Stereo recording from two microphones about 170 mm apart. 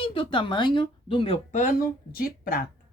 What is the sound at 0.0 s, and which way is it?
Speech, 30° left (ahead or behind).